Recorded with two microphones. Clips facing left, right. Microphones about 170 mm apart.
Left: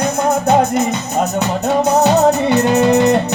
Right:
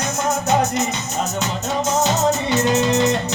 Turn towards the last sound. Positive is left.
turn(degrees=60)  # may be behind; listen again after turning